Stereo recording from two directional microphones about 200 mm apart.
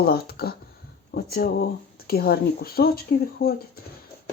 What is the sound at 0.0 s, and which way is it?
Speech, 50° left (ahead or behind).